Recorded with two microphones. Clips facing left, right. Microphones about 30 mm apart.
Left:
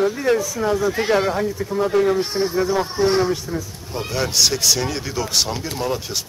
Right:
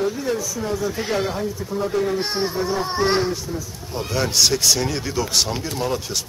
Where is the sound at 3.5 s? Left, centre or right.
Left.